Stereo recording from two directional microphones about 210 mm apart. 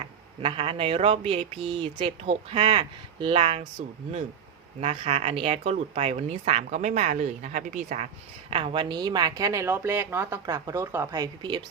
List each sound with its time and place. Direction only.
0.4 s speech: 25° right (ahead or behind)
4.8 s speech: 30° right (ahead or behind)
8.4 s speech: 25° right (ahead or behind)